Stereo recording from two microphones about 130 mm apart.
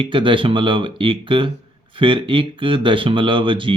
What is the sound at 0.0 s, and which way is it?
Speech, 40° right (ahead or behind).